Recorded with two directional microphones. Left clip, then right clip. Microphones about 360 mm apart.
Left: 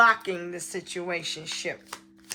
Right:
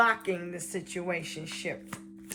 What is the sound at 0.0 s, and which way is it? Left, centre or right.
Speech, centre.